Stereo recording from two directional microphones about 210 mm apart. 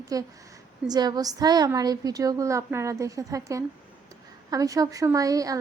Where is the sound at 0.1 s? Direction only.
15° right (ahead or behind).